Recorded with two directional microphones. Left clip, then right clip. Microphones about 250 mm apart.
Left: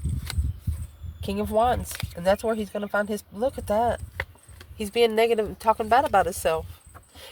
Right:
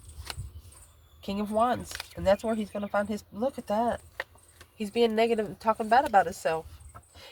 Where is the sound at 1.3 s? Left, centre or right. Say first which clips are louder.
Left 4 dB; left.